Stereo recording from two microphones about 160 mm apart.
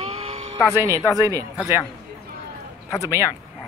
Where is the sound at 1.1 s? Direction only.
20° right (ahead or behind).